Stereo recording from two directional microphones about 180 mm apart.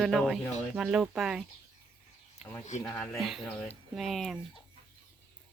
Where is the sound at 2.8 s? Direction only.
10° left (ahead or behind).